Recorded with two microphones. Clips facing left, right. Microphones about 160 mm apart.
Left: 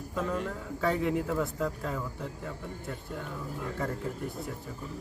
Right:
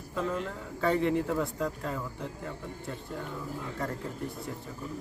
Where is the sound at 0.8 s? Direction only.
Centre (ahead or behind).